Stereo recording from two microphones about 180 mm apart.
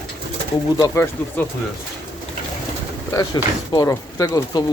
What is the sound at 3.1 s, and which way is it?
Speech, 20° left (ahead or behind).